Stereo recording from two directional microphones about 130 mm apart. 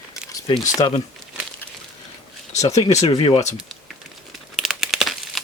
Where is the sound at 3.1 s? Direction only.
40° left (ahead or behind).